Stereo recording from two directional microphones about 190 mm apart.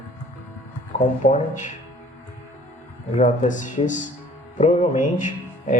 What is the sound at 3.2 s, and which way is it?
A man's voice, 40° left (ahead or behind).